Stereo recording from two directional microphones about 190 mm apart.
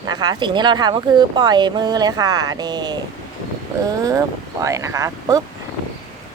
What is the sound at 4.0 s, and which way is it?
Speech, 20° right (ahead or behind).